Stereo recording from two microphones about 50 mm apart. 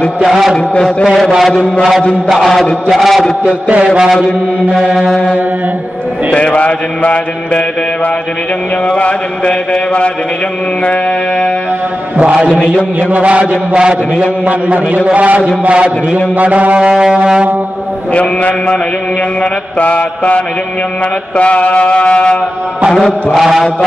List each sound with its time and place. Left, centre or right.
0.2 s mantra: centre
3.4 s mantra: right
6.3 s mantra: left
8.8 s mantra: left
12.2 s mantra: right
15.0 s mantra: right
16.9 s music: centre
18.1 s mantra: left
19.8 s mantra: left
23.3 s mantra: centre